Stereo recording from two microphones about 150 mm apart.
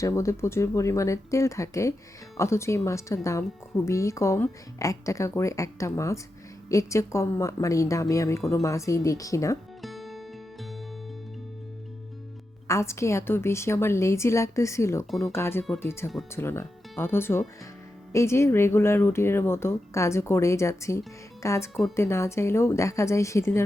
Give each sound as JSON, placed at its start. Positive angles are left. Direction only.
{"t": 0.0, "sound": "a woman's voice", "side_deg": 20}
{"t": 9.8, "sound": "music", "side_deg": 0}
{"t": 12.6, "sound": "a woman's voice", "side_deg": 20}